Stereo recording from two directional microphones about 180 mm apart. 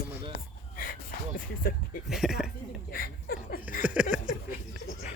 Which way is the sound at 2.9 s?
55° left (ahead or behind).